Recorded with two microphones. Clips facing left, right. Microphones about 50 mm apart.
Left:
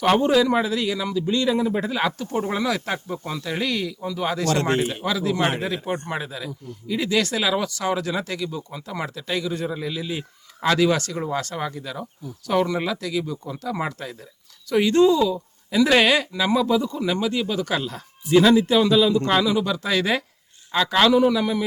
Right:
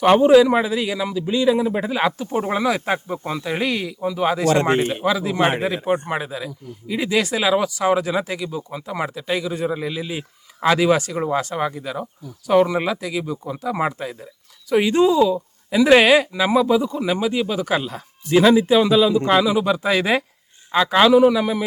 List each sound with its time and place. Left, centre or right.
0.0 s speech: centre